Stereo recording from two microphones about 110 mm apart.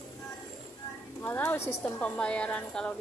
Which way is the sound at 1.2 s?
20° left (ahead or behind).